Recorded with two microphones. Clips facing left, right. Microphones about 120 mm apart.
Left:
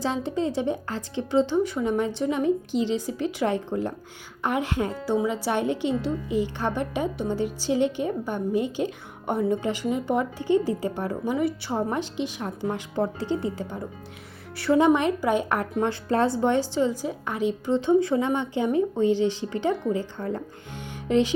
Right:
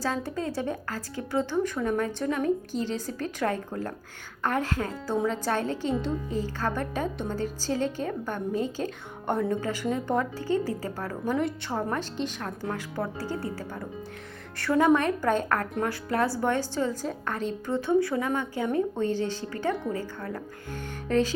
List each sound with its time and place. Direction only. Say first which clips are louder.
0.0 s a woman's voice: left 4 dB; 20° left (ahead or behind)
4.9 s a woman's voice: left 1 dB; 5° left (ahead or behind)
9.6 s a woman's voice: left 2 dB; 15° left (ahead or behind)
15.8 s a woman's voice: left 6 dB; 25° left (ahead or behind)